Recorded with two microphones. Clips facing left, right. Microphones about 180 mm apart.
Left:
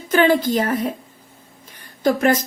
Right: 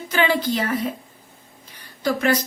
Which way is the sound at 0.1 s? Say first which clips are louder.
Left 5 dB; 50° left (ahead or behind).